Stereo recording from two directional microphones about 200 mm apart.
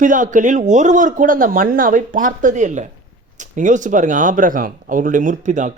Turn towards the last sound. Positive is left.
turn(degrees=-40)  # may be behind; listen again after turning